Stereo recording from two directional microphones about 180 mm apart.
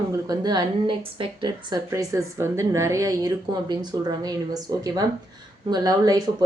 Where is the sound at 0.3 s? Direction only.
20° right (ahead or behind).